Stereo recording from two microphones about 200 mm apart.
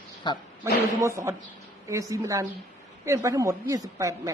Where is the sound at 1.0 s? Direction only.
15° right (ahead or behind).